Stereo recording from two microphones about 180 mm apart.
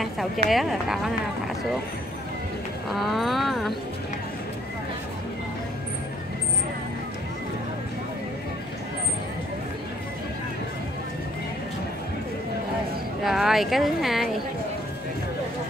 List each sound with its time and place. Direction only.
0.0 s speech: centre (ahead or behind)
2.9 s speech: centre (ahead or behind)
13.2 s speech: centre (ahead or behind)